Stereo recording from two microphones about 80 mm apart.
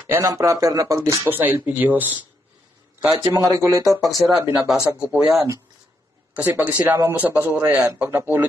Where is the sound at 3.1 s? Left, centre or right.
Right.